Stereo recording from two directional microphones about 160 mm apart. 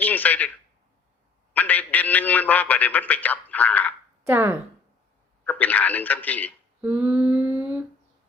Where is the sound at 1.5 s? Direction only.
10° left (ahead or behind).